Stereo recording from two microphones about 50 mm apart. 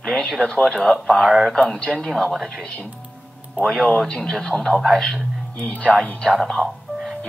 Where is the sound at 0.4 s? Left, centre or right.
Centre.